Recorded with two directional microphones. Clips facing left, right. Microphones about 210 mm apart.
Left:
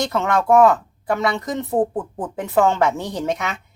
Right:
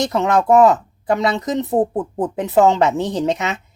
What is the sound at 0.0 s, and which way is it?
A woman's voice, 20° right (ahead or behind).